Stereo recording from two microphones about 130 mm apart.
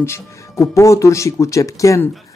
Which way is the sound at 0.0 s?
20° left (ahead or behind).